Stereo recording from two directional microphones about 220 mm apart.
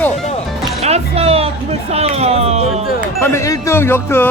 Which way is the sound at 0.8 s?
30° right (ahead or behind).